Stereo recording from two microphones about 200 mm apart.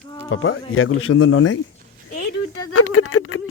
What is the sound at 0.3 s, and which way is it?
Speech, 80° left.